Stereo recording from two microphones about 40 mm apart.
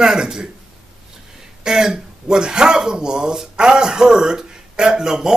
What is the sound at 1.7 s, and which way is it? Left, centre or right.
Speech, centre.